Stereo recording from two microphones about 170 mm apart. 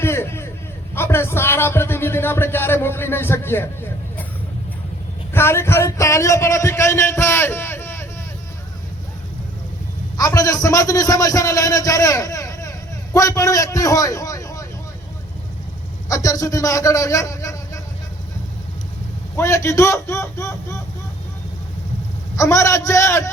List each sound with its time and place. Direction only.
0.0 s a sound: 15° left (ahead or behind)
5.3 s a man's voice: 15° left (ahead or behind)
10.2 s a man's voice: 20° left (ahead or behind)
16.0 s a man's voice: 20° left (ahead or behind)
19.4 s a man's voice: 15° left (ahead or behind)
22.4 s a man's voice: 15° left (ahead or behind)